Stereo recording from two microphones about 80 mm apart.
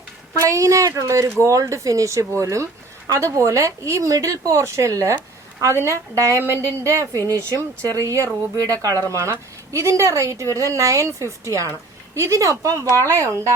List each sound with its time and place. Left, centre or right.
0.4 s a woman's voice: right